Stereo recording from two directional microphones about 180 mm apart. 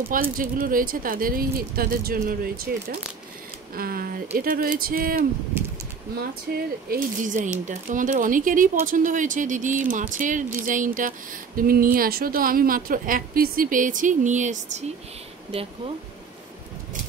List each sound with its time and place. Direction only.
0.1 s speech: 50° right (ahead or behind)
6.5 s speech: 50° right (ahead or behind)